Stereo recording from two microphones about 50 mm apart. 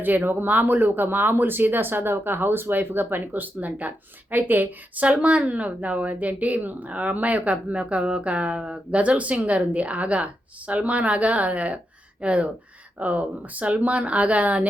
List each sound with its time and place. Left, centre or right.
0.0 s speech: right
5.0 s speech: right